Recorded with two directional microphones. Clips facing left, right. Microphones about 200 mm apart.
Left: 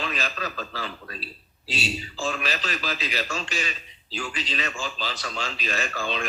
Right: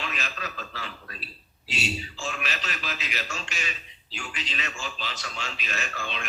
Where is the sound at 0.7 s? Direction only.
35° left (ahead or behind).